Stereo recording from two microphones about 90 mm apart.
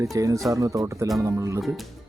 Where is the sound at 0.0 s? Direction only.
40° right (ahead or behind).